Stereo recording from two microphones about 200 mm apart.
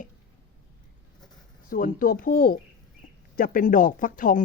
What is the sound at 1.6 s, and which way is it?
Speech, 45° left (ahead or behind).